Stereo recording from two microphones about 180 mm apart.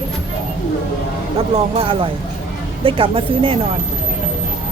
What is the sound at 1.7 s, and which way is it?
Speech, 30° right (ahead or behind).